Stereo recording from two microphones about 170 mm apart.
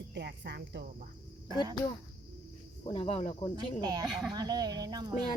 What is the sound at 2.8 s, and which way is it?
Speech, 35° left (ahead or behind).